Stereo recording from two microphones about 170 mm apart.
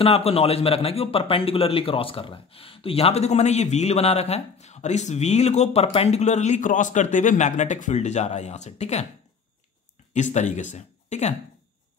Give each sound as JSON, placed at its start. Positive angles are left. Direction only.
{"t": 0.0, "sound": "a man's voice", "side_deg": 35}
{"t": 10.1, "sound": "speech", "side_deg": 45}